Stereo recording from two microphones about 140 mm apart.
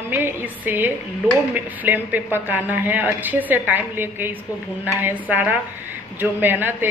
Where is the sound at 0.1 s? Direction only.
15° right (ahead or behind).